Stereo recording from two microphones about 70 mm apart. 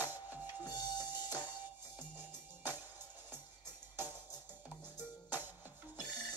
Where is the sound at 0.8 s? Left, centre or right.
Left.